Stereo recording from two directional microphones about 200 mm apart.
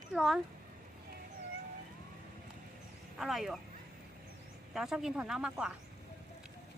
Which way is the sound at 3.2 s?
Centre (ahead or behind).